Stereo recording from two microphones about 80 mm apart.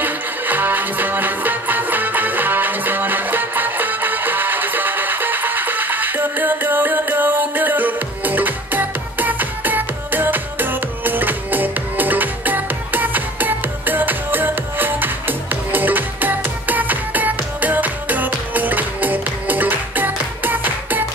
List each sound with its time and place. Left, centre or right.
0.0 s music: right